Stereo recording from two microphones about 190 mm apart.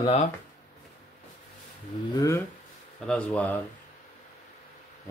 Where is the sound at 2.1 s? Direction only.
15° left (ahead or behind).